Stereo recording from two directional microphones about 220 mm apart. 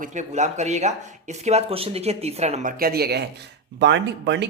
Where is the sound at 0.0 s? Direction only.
35° right (ahead or behind).